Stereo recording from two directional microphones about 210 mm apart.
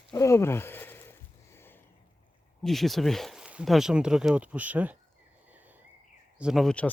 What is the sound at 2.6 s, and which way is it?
Speech, centre (ahead or behind).